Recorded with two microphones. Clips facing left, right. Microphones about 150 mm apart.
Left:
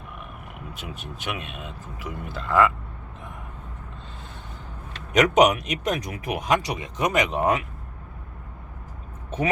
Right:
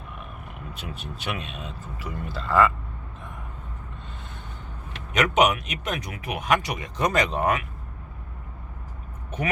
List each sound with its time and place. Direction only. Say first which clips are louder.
0.7 s speech: right 1 dB; 10° left (ahead or behind)
5.1 s speech: left 3 dB; 40° left (ahead or behind)
6.8 s speech: even; 15° left (ahead or behind)